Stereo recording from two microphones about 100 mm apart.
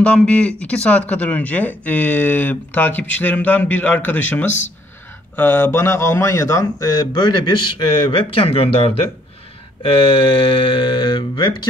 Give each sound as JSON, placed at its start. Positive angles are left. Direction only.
{"t": 0.0, "sound": "speech", "side_deg": 10}